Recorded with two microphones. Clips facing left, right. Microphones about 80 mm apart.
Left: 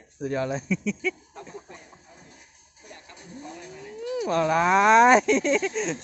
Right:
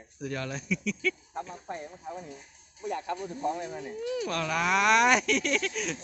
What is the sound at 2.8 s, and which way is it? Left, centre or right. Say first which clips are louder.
Speech: right 15 dB; right.